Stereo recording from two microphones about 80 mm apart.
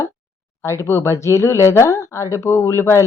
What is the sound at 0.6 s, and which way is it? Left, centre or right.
Speech, left.